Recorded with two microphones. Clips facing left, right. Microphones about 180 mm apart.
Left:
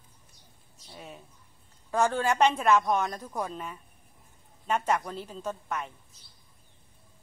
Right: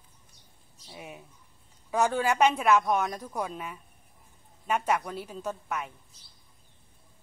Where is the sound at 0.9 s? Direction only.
10° right (ahead or behind).